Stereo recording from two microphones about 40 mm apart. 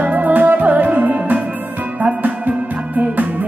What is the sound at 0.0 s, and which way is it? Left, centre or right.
Music, right.